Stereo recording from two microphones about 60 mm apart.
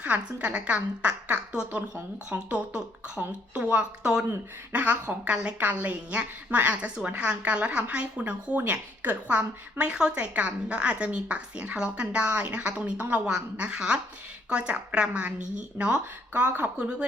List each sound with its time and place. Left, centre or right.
0.0 s speech: right
4.7 s speech: right
5.3 s speech: centre
13.2 s a woman's voice: centre